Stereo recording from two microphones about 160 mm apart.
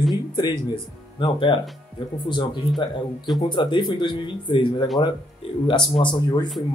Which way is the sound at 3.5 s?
30° left (ahead or behind).